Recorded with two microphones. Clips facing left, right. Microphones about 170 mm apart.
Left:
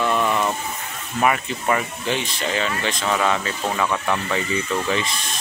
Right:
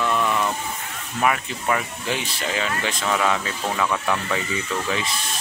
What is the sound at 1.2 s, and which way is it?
Speech, centre (ahead or behind).